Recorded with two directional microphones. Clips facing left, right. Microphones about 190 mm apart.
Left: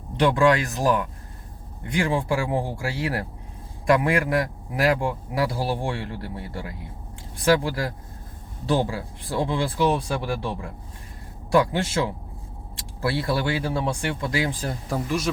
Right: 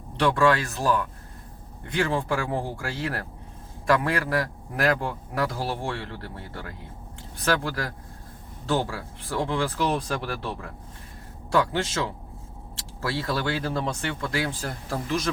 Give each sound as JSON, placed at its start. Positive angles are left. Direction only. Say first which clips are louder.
{"t": 0.2, "sound": "speech", "louder": "left 2 dB", "side_deg": 15}